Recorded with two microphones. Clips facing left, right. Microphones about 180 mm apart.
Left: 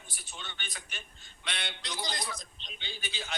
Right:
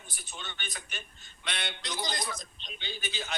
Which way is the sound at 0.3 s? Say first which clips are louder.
Right 2 dB; 50° right (ahead or behind).